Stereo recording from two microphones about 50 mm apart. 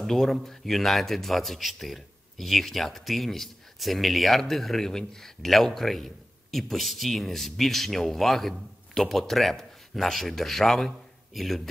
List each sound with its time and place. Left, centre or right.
0.0 s speech: centre